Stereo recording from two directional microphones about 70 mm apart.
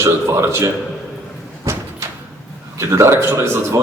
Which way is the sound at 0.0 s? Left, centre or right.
Right.